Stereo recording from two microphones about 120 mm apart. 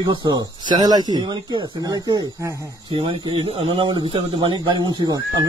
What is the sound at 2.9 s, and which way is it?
Speech, 40° right (ahead or behind).